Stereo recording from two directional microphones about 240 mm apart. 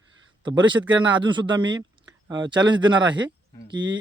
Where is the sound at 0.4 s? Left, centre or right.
Centre.